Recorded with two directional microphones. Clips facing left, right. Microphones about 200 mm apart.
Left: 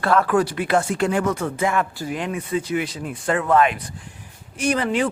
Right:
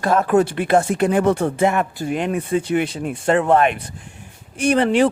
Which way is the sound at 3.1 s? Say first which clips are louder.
Right 5 dB; 25° right (ahead or behind).